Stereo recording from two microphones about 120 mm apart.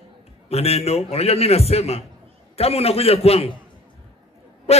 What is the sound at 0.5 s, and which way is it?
A man's voice, 60° left (ahead or behind).